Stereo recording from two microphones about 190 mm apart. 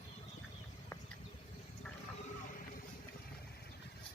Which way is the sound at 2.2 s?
45° left (ahead or behind).